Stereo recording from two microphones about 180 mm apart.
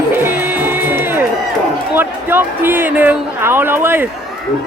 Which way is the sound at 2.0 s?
10° right (ahead or behind).